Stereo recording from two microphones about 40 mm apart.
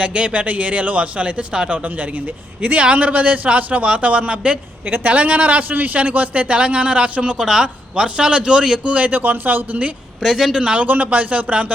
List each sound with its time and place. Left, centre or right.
0.0 s a man's voice: right
2.6 s a man's voice: right
7.3 s a man's voice: centre
8.8 s speech: right
10.2 s speech: centre
10.5 s a man's voice: right
10.8 s a man's voice: right